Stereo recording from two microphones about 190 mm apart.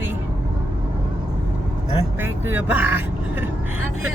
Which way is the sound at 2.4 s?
10° right (ahead or behind).